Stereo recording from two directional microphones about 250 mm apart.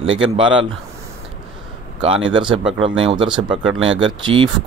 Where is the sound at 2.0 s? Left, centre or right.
Centre.